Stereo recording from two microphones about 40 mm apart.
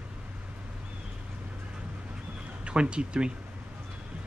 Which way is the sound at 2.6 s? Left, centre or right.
Right.